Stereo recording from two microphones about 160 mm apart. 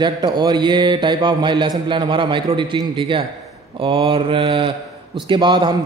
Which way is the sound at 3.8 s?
35° right (ahead or behind).